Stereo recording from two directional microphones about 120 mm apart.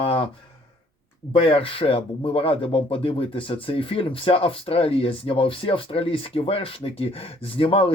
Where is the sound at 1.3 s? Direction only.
50° left (ahead or behind).